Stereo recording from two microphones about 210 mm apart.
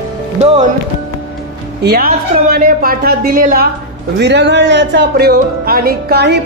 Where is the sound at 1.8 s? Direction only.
45° right (ahead or behind).